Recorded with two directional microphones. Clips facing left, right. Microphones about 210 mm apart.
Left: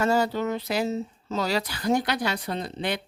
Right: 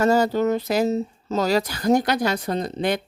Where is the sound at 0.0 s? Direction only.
40° right (ahead or behind).